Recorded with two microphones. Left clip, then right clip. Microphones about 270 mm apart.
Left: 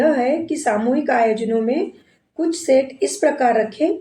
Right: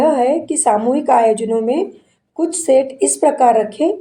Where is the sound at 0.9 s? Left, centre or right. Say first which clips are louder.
Right 4 dB; centre.